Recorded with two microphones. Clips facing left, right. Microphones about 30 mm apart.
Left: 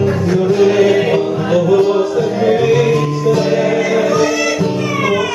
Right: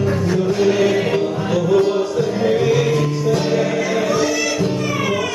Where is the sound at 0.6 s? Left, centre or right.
Centre.